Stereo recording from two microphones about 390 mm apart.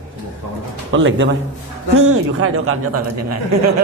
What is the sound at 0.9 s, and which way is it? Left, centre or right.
A man's voice, right.